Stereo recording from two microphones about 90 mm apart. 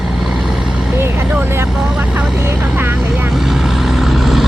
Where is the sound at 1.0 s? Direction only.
25° right (ahead or behind).